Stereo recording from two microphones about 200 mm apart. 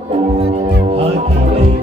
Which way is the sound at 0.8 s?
30° right (ahead or behind).